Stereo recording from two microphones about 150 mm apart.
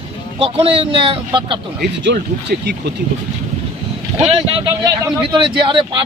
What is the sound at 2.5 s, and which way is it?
Speech, 80° right.